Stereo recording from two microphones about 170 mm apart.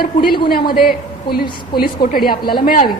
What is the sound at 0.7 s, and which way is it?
A woman's voice, 60° left (ahead or behind).